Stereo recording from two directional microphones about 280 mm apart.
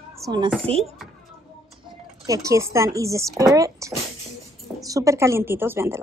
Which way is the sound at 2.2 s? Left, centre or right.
Centre.